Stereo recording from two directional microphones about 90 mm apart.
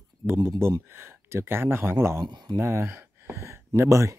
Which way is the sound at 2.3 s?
50° right (ahead or behind).